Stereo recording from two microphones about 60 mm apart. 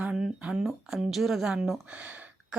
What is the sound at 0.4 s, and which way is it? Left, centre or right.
Speech, centre.